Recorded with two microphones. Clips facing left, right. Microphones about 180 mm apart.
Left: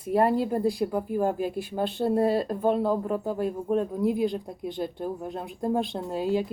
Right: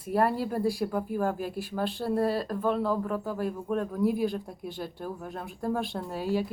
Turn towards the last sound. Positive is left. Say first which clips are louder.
# left 3 dB
turn(degrees=20)  # may be behind; listen again after turning